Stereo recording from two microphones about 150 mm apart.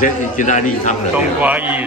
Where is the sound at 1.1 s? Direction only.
10° right (ahead or behind).